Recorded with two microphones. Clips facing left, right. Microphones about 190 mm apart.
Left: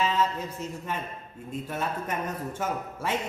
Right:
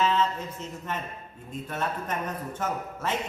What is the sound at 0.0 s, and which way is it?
A man's voice, 10° left (ahead or behind).